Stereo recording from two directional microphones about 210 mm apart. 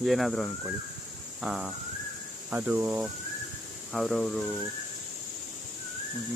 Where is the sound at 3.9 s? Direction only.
Centre (ahead or behind).